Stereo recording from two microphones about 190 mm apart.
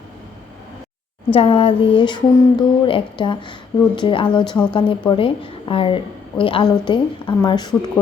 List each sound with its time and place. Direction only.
1.3 s a woman's voice: 30° left (ahead or behind)